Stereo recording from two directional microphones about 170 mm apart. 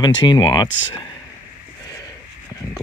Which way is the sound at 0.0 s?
25° left (ahead or behind).